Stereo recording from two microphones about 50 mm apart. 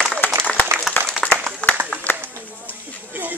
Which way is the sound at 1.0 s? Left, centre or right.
Left.